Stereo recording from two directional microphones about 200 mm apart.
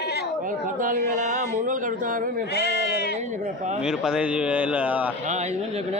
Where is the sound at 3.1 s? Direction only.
35° right (ahead or behind).